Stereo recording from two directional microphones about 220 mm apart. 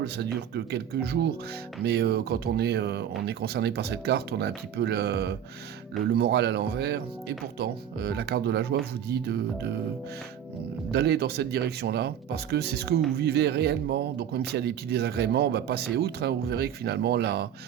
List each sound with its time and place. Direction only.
0.0 s speech: 45° right (ahead or behind)
10.9 s speech: 50° right (ahead or behind)